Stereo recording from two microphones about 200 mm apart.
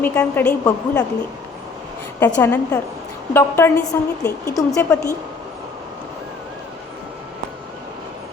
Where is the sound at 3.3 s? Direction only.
10° left (ahead or behind).